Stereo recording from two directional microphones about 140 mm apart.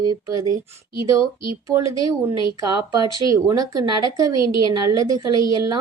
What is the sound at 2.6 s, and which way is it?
Speech, 30° right (ahead or behind).